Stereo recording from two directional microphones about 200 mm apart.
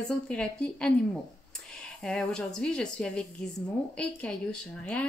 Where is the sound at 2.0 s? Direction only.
5° left (ahead or behind).